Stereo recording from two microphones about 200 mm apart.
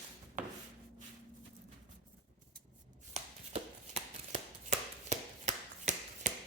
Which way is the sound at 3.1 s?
35° right (ahead or behind).